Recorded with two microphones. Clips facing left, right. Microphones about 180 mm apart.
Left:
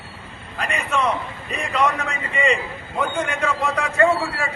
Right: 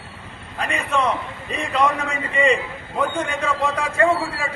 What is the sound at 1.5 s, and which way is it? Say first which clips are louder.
A man's voice: right 1 dB; 30° right (ahead or behind).